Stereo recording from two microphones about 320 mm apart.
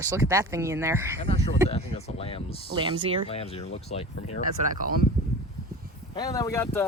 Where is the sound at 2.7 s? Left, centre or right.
Centre.